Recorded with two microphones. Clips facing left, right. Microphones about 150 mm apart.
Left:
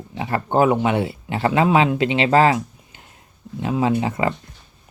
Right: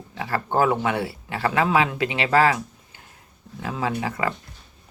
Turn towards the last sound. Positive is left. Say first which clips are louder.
# left 5 dB
turn(degrees=25)  # may be behind; listen again after turning